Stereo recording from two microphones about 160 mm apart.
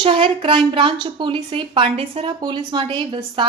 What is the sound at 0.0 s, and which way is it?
A woman's voice, 35° right (ahead or behind).